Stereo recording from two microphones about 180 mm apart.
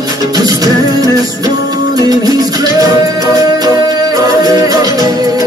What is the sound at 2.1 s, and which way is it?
Music, 20° right (ahead or behind).